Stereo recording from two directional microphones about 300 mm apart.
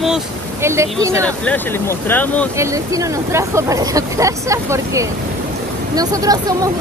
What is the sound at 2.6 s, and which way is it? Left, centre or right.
Speech, centre.